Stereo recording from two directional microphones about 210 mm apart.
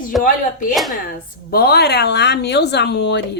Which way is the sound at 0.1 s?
Centre (ahead or behind).